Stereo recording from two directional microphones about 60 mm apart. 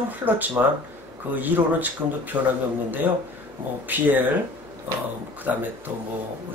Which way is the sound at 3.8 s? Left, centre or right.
Right.